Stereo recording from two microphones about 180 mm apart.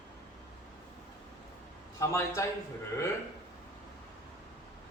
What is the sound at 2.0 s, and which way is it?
Speech, 15° left (ahead or behind).